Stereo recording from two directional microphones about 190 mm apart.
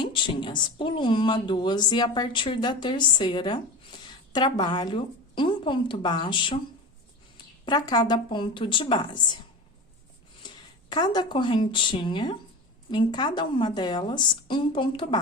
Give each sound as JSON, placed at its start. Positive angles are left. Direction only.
{"t": 0.0, "sound": "a woman's voice", "side_deg": 25}
{"t": 7.6, "sound": "a woman's voice", "side_deg": 20}
{"t": 10.4, "sound": "a woman's voice", "side_deg": 20}